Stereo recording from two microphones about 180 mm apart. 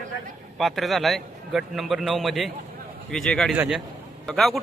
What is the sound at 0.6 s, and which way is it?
A man's voice, centre (ahead or behind).